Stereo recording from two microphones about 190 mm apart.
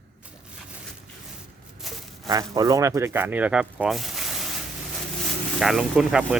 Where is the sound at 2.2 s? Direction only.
20° right (ahead or behind); by 4.5 s centre (ahead or behind).